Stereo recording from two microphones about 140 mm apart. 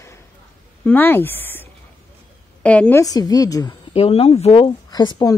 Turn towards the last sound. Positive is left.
turn(degrees=30)  # may be behind; listen again after turning